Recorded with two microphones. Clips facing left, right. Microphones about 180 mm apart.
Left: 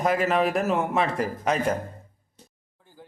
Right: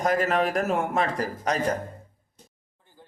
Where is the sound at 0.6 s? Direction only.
Centre (ahead or behind).